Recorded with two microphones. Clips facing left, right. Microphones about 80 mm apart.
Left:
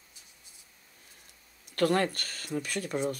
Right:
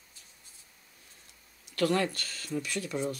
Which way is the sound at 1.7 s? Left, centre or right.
Left.